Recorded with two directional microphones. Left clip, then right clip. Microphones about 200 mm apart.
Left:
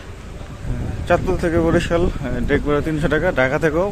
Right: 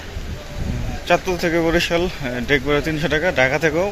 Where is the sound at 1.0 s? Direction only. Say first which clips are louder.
Even; 20° left (ahead or behind).